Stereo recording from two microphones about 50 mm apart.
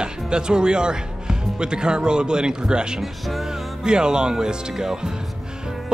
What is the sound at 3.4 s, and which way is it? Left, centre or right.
Speech, centre.